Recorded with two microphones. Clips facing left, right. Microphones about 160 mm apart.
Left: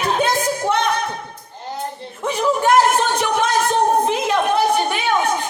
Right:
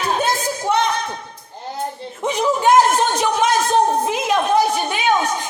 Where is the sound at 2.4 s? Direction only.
15° right (ahead or behind).